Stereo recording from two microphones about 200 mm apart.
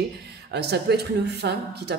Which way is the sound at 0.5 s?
55° right (ahead or behind).